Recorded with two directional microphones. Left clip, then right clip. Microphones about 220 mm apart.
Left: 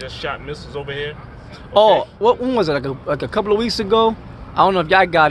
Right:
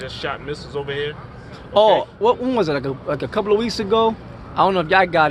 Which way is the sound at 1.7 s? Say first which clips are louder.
Left 2 dB; 20° left (ahead or behind).